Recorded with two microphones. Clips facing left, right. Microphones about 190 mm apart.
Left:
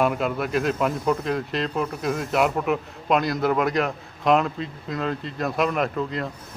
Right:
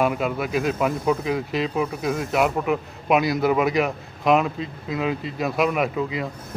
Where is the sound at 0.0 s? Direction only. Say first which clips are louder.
Even; centre (ahead or behind).